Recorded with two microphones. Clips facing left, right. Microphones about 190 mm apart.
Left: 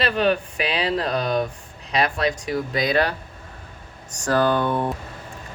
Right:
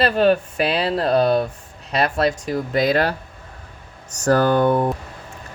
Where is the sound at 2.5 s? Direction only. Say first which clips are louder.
Right 3 dB; 50° right (ahead or behind).